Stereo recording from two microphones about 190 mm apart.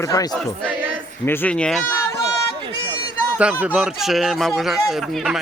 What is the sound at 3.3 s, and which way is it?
Speech, 10° right (ahead or behind).